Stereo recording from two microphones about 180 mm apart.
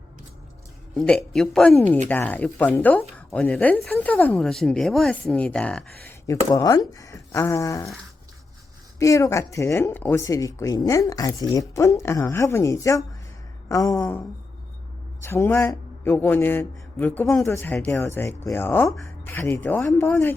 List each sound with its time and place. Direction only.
0.9 s speech: 5° left (ahead or behind)
6.5 s speech: 20° left (ahead or behind)
9.0 s speech: 20° left (ahead or behind)
15.2 s speech: 15° left (ahead or behind)